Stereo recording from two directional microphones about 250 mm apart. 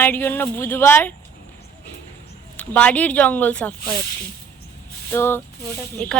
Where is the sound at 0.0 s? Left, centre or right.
Centre.